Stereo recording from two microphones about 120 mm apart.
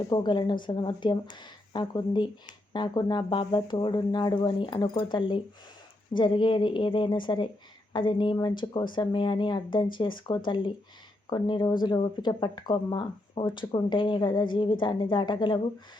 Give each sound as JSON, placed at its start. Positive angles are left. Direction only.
{"t": 0.1, "sound": "speech", "side_deg": 40}